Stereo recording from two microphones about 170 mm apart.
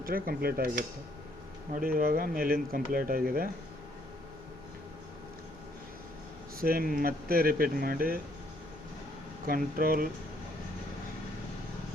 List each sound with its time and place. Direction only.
0.0 s speech: 60° right (ahead or behind)
6.6 s speech: 60° right (ahead or behind)
9.5 s speech: 60° right (ahead or behind)